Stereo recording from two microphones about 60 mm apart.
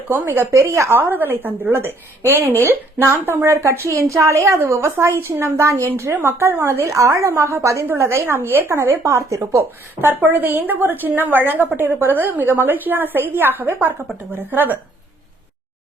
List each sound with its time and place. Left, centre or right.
0.1 s speech: right
0.7 s a woman's voice: right
0.9 s speech: right
3.5 s a woman's voice: right
6.5 s a woman's voice: right
7.3 s a woman's voice: right